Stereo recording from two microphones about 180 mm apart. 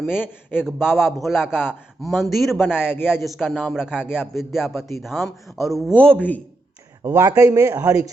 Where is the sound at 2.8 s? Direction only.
10° left (ahead or behind).